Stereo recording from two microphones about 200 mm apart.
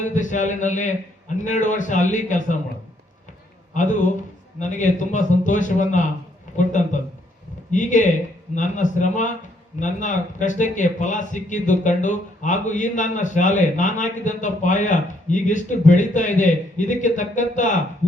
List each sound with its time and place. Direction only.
0.0 s a man's voice: 40° left (ahead or behind)
4.6 s a man's voice: 40° left (ahead or behind)